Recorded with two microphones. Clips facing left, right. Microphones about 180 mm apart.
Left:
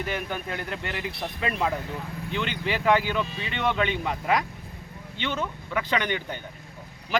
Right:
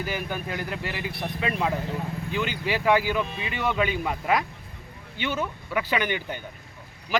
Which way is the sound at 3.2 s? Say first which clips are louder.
Right 1 dB; 60° right (ahead or behind).